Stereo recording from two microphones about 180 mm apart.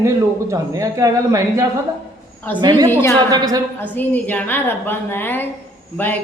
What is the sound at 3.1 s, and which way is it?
Speech, 20° right (ahead or behind).